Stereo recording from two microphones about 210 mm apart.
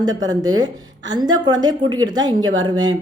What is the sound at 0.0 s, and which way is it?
A woman's voice, 20° right (ahead or behind).